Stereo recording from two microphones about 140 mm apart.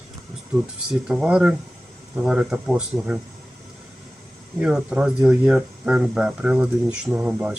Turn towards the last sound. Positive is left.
turn(degrees=-10)  # may be behind; listen again after turning